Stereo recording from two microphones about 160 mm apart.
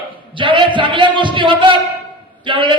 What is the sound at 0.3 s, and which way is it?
A man's voice, 30° right (ahead or behind).